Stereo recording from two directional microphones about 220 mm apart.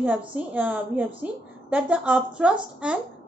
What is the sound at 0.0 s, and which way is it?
A woman's voice, 5° right (ahead or behind).